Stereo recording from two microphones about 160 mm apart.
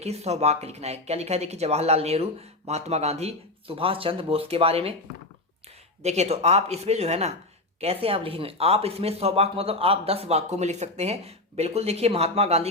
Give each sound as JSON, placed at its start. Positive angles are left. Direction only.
{"t": 0.0, "sound": "speech", "side_deg": -40}
{"t": 6.0, "sound": "speech", "side_deg": -40}